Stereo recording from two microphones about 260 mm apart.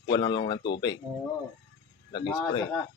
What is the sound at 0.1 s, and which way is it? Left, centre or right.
Speech, centre.